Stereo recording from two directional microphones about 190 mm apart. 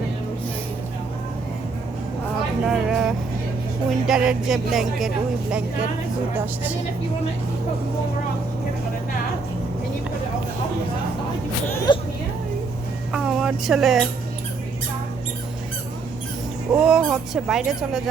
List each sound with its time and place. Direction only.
2.6 s speech: centre (ahead or behind)
11.9 s vehicle: 25° left (ahead or behind)
13.1 s speech: 5° right (ahead or behind)
16.7 s speech: 5° right (ahead or behind)